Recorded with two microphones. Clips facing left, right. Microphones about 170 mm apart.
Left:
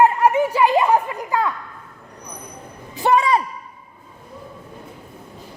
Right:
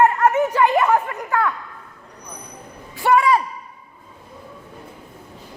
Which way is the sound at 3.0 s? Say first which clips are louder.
Right 1 dB; 20° left (ahead or behind).